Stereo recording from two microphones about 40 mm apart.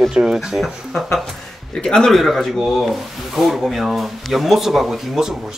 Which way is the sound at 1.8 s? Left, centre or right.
Centre.